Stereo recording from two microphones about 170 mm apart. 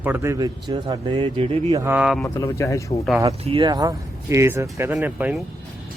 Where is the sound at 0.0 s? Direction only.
15° right (ahead or behind); by 1.8 s 30° right (ahead or behind).